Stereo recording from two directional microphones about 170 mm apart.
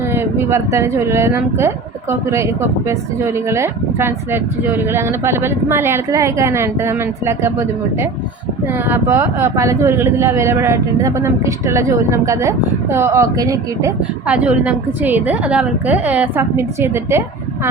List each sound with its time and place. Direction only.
0.1 s speech: 15° right (ahead or behind)
8.9 s speech: 15° right (ahead or behind)
14.3 s speech: 10° right (ahead or behind)